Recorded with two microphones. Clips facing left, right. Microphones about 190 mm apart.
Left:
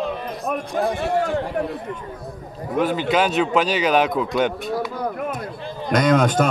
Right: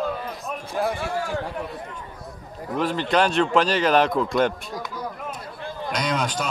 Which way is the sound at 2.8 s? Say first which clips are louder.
Left 2 dB; 5° left (ahead or behind).